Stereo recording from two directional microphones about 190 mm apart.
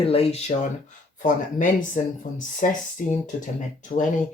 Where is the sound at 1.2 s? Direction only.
45° left (ahead or behind).